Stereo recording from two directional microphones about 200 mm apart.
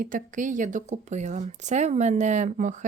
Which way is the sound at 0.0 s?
40° right (ahead or behind).